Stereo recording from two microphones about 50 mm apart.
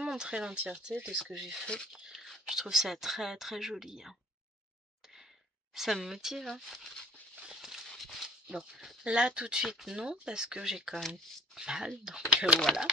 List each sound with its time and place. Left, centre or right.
0.0 s speech: centre
5.8 s speech: centre
8.0 s dog: centre
8.5 s speech: centre
11.6 s speech: centre